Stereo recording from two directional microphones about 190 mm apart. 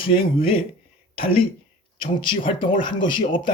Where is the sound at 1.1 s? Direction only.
30° left (ahead or behind).